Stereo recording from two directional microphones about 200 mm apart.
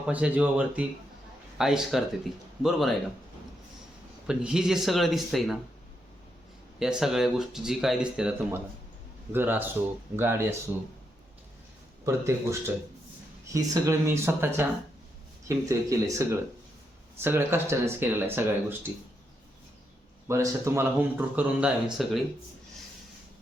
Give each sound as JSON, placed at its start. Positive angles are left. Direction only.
{"t": 0.1, "sound": "speech", "side_deg": -5}
{"t": 4.3, "sound": "speech", "side_deg": -5}
{"t": 6.7, "sound": "speech", "side_deg": 0}
{"t": 12.0, "sound": "speech", "side_deg": -15}
{"t": 20.2, "sound": "speech", "side_deg": -15}